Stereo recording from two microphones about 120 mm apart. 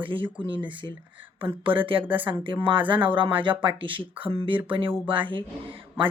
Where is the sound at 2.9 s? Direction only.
45° right (ahead or behind).